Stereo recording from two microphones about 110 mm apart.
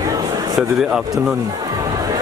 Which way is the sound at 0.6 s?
5° right (ahead or behind).